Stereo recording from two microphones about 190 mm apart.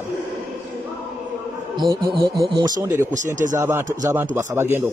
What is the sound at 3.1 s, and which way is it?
Speech, 40° right (ahead or behind).